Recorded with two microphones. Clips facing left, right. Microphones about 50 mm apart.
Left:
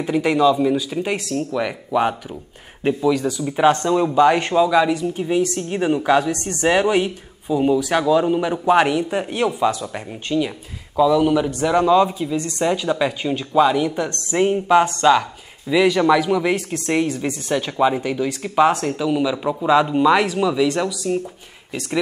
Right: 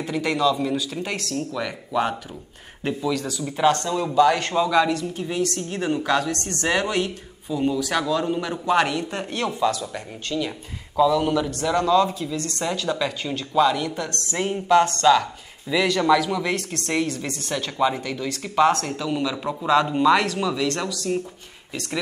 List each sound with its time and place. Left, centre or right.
0.0 s speech: centre
4.6 s speech: centre
11.0 s speech: centre
11.3 s speech: centre